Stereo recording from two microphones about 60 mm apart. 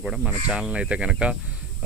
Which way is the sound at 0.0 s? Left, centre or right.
Centre.